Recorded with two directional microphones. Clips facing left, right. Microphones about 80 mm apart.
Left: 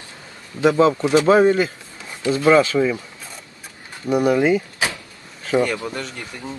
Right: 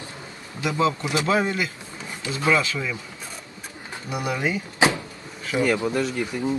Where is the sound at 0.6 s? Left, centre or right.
Left.